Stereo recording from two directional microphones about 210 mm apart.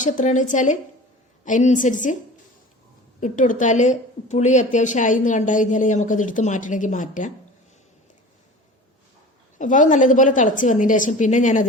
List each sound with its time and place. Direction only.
0.0 s a woman's voice: 35° left (ahead or behind)
3.2 s a woman's voice: 35° left (ahead or behind)
9.6 s a woman's voice: 35° left (ahead or behind)